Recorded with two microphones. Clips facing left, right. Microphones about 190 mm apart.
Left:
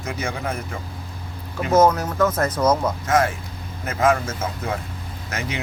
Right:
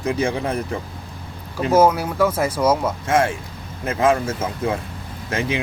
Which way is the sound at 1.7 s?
10° right (ahead or behind).